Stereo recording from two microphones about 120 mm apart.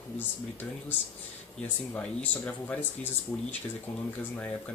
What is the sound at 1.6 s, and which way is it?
Speech, 15° left (ahead or behind).